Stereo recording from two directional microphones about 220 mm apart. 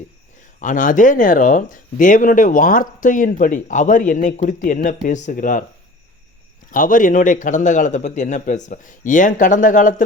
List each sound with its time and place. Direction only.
0.6 s speech: 35° left (ahead or behind)
6.7 s speech: 35° left (ahead or behind)